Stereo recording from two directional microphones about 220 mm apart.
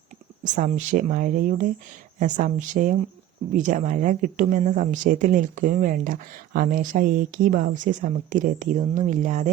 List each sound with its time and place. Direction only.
0.4 s speech: 35° right (ahead or behind)